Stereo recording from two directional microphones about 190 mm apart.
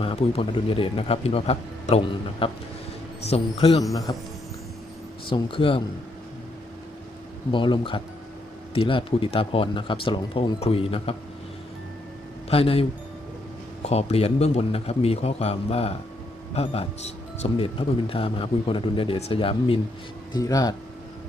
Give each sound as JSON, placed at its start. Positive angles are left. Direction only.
{"t": 0.0, "sound": "a man's voice", "side_deg": 30}
{"t": 5.3, "sound": "speech", "side_deg": 25}
{"t": 7.5, "sound": "speech", "side_deg": 25}
{"t": 12.5, "sound": "speech", "side_deg": 30}
{"t": 13.8, "sound": "a man's voice", "side_deg": 35}